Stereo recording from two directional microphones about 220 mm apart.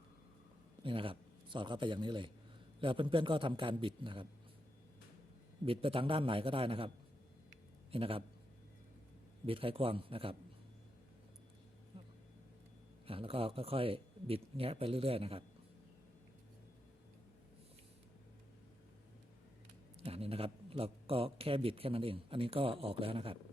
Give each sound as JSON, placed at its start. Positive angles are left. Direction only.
{"t": 0.8, "sound": "a man's voice", "side_deg": -25}
{"t": 5.6, "sound": "a man's voice", "side_deg": -25}
{"t": 9.5, "sound": "a man's voice", "side_deg": -25}
{"t": 11.9, "sound": "vehicle", "side_deg": -25}
{"t": 13.1, "sound": "a man's voice", "side_deg": -25}
{"t": 20.1, "sound": "a man's voice", "side_deg": -25}